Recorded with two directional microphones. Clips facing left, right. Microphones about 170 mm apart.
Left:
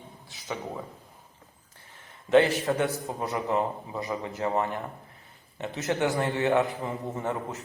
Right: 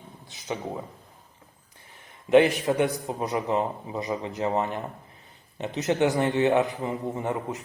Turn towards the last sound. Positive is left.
turn(degrees=-15)  # may be behind; listen again after turning